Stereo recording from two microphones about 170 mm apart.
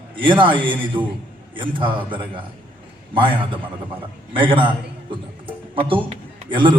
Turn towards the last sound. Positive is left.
turn(degrees=-30)  # may be behind; listen again after turning